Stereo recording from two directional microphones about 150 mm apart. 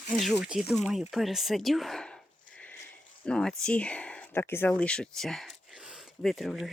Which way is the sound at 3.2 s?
5° left (ahead or behind).